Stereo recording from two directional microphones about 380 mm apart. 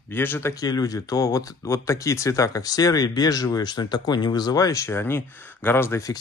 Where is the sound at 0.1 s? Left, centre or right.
Centre.